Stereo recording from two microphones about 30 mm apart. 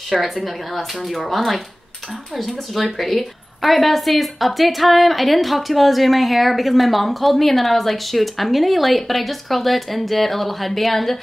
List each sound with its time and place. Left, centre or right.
0.1 s a woman's voice: centre